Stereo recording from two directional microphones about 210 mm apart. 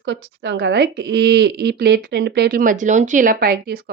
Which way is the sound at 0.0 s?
55° right (ahead or behind).